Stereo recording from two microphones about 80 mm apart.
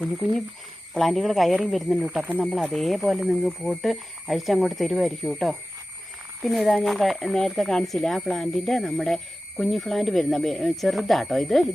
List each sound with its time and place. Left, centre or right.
0.9 s speech: centre